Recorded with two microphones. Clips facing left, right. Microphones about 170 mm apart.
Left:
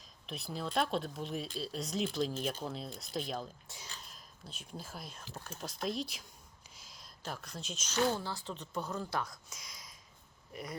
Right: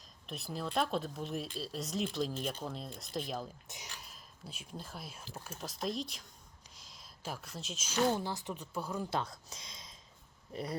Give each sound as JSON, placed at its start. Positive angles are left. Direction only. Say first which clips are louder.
{"t": 0.3, "sound": "speech", "louder": "even", "side_deg": 0}
{"t": 3.7, "sound": "speech", "louder": "right 1 dB", "side_deg": -15}
{"t": 4.0, "sound": "speech", "louder": "right 1 dB", "side_deg": -5}
{"t": 6.7, "sound": "a sound", "louder": "left 1 dB", "side_deg": 0}
{"t": 8.1, "sound": "speech", "louder": "right 2 dB", "side_deg": -20}
{"t": 9.0, "sound": "speech", "louder": "right 1 dB", "side_deg": -25}